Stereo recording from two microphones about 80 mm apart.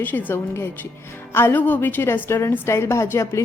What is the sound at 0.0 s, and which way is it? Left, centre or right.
A woman's voice, left.